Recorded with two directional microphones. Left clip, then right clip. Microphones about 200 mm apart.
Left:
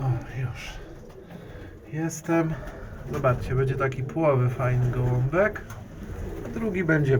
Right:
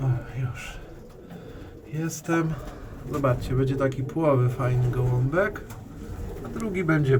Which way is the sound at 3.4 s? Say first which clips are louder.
Right 1 dB; 25° right (ahead or behind).